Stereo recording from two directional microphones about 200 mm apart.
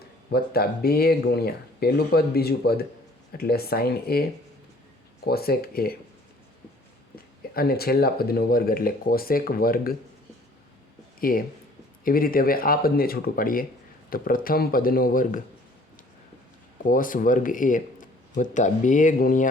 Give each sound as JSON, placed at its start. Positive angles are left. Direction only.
{"t": 0.3, "sound": "speech", "side_deg": 50}
{"t": 7.5, "sound": "speech", "side_deg": 50}
{"t": 11.2, "sound": "speech", "side_deg": 45}
{"t": 16.8, "sound": "speech", "side_deg": 45}